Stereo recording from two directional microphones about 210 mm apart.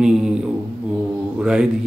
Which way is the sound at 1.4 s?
5° right (ahead or behind).